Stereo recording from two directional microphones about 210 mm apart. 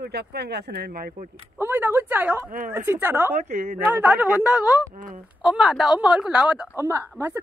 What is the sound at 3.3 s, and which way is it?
Speech, 35° right (ahead or behind).